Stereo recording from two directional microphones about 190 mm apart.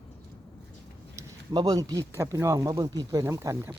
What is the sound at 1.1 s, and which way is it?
Speech, 20° right (ahead or behind).